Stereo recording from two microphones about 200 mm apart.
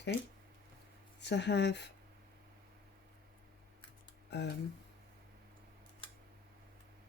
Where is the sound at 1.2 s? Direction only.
60° left (ahead or behind).